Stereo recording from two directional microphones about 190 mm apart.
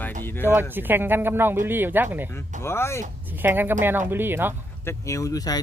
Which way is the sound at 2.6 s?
15° left (ahead or behind).